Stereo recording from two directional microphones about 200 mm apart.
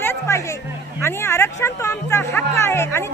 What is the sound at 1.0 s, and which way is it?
Speech, 10° left (ahead or behind).